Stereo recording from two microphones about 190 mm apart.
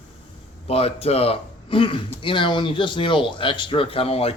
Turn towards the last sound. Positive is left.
turn(degrees=30)  # may be behind; listen again after turning